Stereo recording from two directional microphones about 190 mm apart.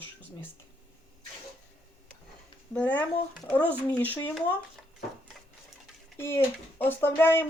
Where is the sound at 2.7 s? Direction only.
10° left (ahead or behind).